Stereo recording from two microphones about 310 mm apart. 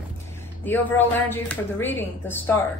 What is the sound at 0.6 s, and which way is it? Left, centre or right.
A woman's voice, centre.